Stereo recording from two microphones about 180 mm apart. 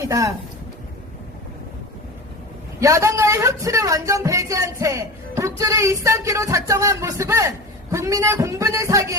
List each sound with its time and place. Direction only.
0.0 s speech: 20° right (ahead or behind)
2.8 s speech: 15° right (ahead or behind)